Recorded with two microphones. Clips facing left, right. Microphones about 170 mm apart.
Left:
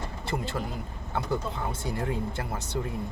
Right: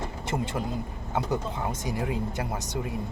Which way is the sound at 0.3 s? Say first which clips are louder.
Right 2 dB; 20° right (ahead or behind).